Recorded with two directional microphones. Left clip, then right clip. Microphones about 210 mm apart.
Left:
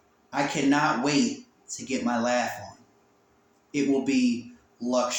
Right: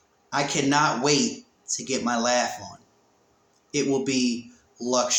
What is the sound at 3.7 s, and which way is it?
Speech, 20° right (ahead or behind).